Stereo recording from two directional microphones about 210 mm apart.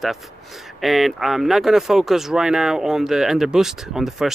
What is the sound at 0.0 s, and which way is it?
Speech, centre (ahead or behind).